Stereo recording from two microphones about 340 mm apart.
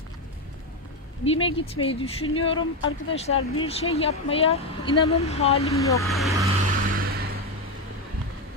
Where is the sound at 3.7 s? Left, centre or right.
Centre.